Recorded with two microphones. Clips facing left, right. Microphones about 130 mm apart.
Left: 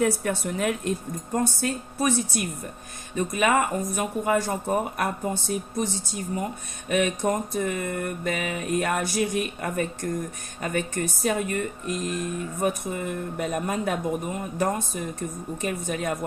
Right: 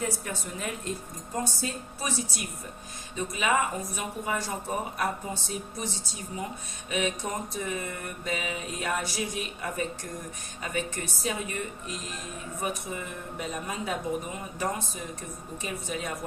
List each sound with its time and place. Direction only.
0.0 s speech: 70° left (ahead or behind)
1.4 s mantra: 60° left (ahead or behind)
3.2 s speech: 55° left (ahead or behind)
6.8 s mantra: 55° left (ahead or behind)
10.6 s speech: 50° left (ahead or behind)
15.6 s mantra: 55° left (ahead or behind)